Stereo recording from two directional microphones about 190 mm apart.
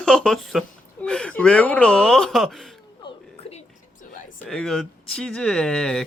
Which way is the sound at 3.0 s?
30° left (ahead or behind).